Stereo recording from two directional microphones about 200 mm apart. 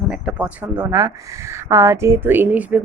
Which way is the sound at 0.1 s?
5° right (ahead or behind).